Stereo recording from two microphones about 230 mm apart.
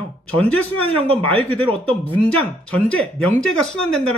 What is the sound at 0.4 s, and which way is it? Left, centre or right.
Speech, centre.